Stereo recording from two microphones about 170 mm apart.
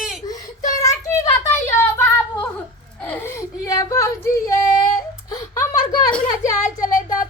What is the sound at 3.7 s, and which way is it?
Female singing, 20° left (ahead or behind).